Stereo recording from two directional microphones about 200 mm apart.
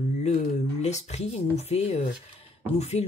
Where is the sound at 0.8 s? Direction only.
35° left (ahead or behind).